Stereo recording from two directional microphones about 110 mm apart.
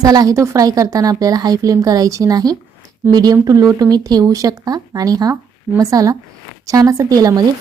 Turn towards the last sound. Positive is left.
turn(degrees=-35)  # may be behind; listen again after turning